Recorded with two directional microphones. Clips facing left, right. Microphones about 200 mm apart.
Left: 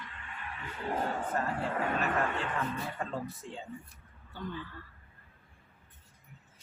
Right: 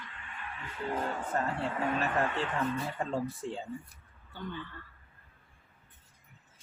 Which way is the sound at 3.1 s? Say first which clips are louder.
Right 5 dB; 30° right (ahead or behind).